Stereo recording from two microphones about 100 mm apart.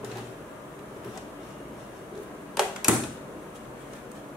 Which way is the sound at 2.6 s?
5° right (ahead or behind).